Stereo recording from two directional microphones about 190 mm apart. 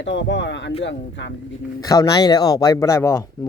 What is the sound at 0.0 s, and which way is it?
Speech, 70° left (ahead or behind).